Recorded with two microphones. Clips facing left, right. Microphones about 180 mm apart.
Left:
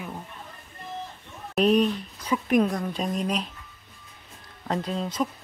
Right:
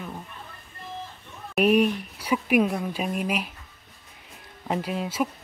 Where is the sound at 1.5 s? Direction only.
10° right (ahead or behind).